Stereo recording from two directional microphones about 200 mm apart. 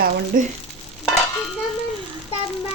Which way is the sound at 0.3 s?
45° right (ahead or behind).